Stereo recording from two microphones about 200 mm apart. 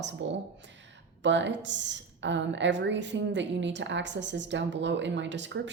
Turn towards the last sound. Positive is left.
turn(degrees=-65)  # may be behind; listen again after turning